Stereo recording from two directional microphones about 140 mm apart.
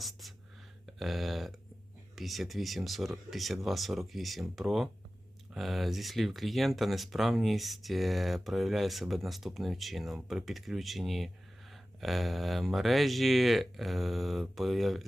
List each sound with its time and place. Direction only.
0.0 s whispering: centre (ahead or behind)
0.9 s speech: centre (ahead or behind)